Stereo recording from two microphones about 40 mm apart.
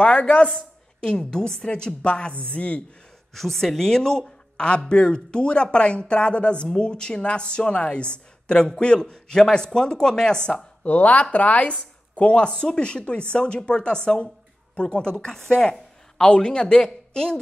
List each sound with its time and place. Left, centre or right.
0.0 s speech: left
3.3 s speech: centre
4.6 s speech: left
10.8 s a woman's voice: left; by 17.4 s centre